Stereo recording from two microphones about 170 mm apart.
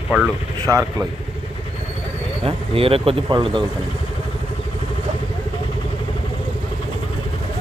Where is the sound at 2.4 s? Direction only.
35° right (ahead or behind).